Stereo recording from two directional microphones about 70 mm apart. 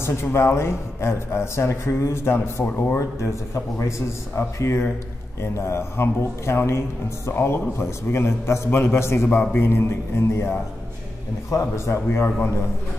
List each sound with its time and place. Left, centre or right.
0.0 s speech: left
3.0 s speech: left